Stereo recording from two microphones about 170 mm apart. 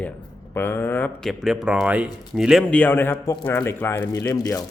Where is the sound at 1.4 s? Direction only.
5° right (ahead or behind).